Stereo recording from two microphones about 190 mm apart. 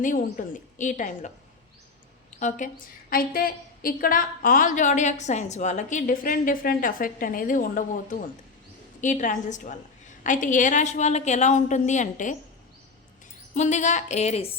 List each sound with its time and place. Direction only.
0.0 s a woman's voice: 45° left (ahead or behind)
2.4 s a woman's voice: 40° left (ahead or behind)
3.1 s a woman's voice: 50° left (ahead or behind)
13.5 s a woman's voice: 40° left (ahead or behind)